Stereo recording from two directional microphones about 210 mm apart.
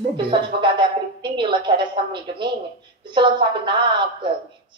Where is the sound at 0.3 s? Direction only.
20° right (ahead or behind).